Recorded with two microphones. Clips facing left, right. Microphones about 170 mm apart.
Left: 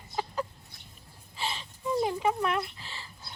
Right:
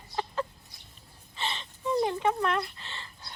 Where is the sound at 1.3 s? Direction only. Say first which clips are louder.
Even; 5° left (ahead or behind).